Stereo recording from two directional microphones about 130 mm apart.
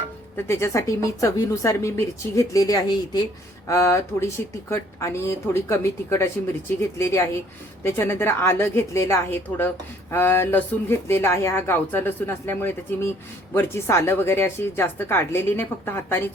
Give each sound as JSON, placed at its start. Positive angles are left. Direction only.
{"t": 0.3, "sound": "a woman's voice", "side_deg": 20}
{"t": 3.7, "sound": "a woman's voice", "side_deg": 25}